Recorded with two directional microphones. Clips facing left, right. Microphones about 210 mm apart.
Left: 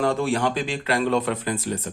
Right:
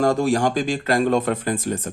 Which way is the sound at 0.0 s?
45° right (ahead or behind).